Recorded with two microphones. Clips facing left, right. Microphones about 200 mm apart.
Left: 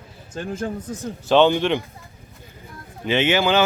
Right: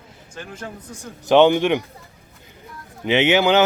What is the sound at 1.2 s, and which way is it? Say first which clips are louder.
Speech: right 2 dB; 15° right (ahead or behind).